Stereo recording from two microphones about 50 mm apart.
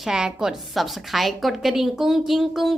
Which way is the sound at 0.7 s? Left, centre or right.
Centre.